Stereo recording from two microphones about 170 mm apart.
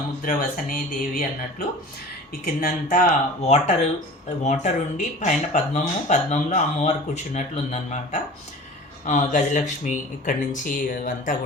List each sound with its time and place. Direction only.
0.2 s speech: 55° left (ahead or behind)
3.4 s speech: 40° left (ahead or behind)